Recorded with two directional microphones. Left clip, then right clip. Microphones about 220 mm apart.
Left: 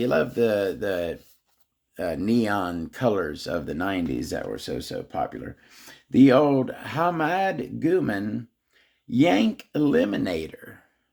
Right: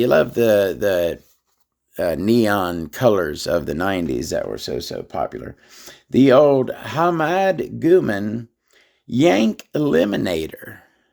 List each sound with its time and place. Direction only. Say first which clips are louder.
0.0 s speech: right 7 dB; 55° right (ahead or behind)